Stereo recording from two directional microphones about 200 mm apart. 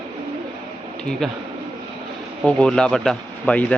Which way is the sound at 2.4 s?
5° left (ahead or behind).